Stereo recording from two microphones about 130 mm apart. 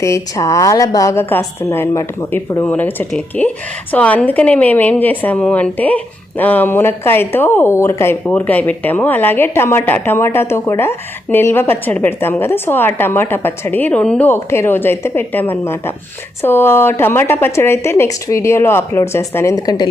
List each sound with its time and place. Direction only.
0.0 s a woman's voice: 25° left (ahead or behind)